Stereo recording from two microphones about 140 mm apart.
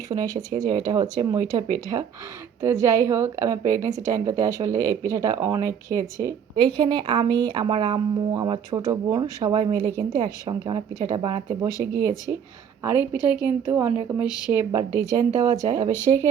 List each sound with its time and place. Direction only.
0.1 s a woman's voice: 25° right (ahead or behind)
6.6 s a woman's voice: 35° right (ahead or behind)
11.9 s a woman's voice: 20° right (ahead or behind)
14.3 s speech: 30° left (ahead or behind)
14.5 s a woman's voice: 20° right (ahead or behind)